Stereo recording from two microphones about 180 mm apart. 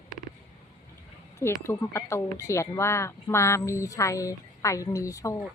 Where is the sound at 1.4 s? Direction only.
15° left (ahead or behind).